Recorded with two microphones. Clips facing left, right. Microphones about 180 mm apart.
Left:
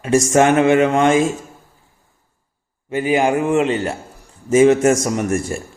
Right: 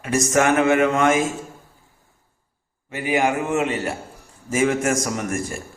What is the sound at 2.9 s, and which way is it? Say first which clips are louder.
Speech: left 5 dB; 25° left (ahead or behind).